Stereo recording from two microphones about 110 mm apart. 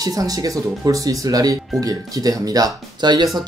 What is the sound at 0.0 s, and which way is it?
Speech, 30° right (ahead or behind).